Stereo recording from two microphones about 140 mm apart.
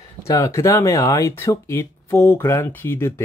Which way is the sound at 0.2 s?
20° left (ahead or behind).